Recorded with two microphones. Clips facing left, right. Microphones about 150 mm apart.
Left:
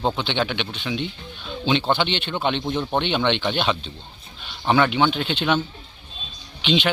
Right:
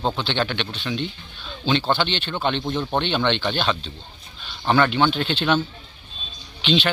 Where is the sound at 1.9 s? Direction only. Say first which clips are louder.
Left 1 dB; 15° left (ahead or behind).